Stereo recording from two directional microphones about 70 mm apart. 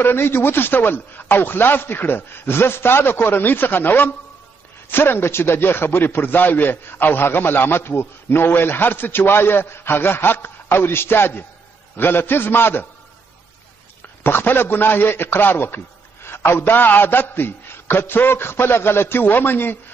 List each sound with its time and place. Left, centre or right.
0.0 s a man's voice: left
14.2 s a man's voice: left